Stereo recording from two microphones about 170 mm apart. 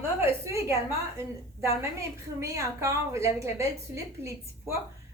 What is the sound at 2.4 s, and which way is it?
A woman's voice, 15° right (ahead or behind).